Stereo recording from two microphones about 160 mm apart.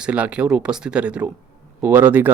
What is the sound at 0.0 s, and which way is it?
Speech, 10° right (ahead or behind).